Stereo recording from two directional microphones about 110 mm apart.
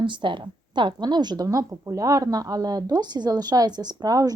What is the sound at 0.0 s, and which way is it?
A woman's voice, 45° right (ahead or behind).